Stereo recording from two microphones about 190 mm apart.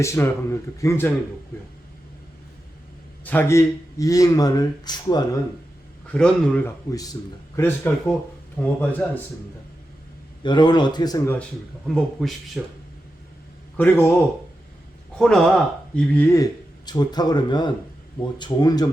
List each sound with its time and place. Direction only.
0.0 s speech: 15° left (ahead or behind)
3.2 s speech: 10° left (ahead or behind)
6.1 s speech: 5° left (ahead or behind)
6.9 s speech: 20° left (ahead or behind)
10.4 s speech: 25° left (ahead or behind)
11.9 s speech: centre (ahead or behind)
13.7 s speech: 10° left (ahead or behind)
15.2 s speech: 5° left (ahead or behind); by 18.9 s 20° left (ahead or behind)